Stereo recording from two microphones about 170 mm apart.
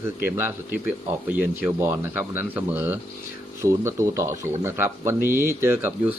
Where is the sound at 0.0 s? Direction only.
15° right (ahead or behind).